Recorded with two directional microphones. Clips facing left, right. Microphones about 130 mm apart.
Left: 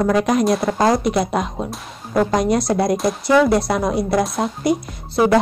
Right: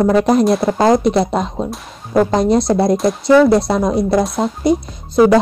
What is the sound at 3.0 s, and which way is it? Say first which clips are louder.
Speech: right 6 dB; centre (ahead or behind).